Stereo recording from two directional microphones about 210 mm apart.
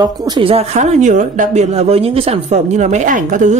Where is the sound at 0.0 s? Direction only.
20° right (ahead or behind).